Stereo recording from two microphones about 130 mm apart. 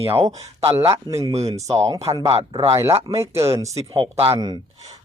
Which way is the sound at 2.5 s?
25° right (ahead or behind).